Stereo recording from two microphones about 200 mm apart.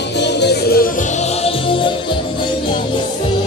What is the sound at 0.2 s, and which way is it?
Music, 60° left (ahead or behind).